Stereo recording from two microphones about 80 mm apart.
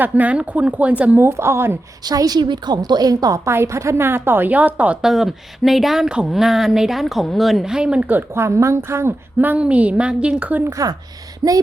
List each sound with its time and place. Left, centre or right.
0.0 s speech: centre
1.2 s a woman's voice: right
2.0 s a woman's voice: right
2.4 s a woman's voice: right
3.4 s a woman's voice: right; by 4.9 s centre
5.0 s speech: centre
8.4 s a woman's voice: right
9.4 s speech: centre
10.6 s a woman's voice: right
11.4 s a woman's voice: right